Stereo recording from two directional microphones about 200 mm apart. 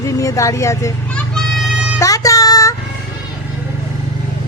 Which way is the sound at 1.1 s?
Centre (ahead or behind).